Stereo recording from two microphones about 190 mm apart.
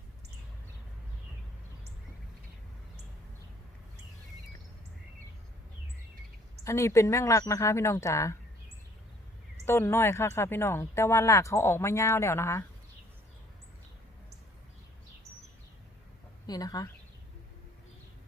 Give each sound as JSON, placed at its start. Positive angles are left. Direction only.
{"t": 6.7, "sound": "speech", "side_deg": 15}
{"t": 9.6, "sound": "speech", "side_deg": 15}
{"t": 16.5, "sound": "speech", "side_deg": 20}